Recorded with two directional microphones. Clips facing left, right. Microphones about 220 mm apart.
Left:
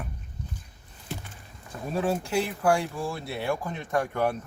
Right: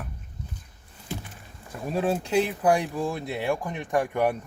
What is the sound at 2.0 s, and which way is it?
Speech, 20° right (ahead or behind).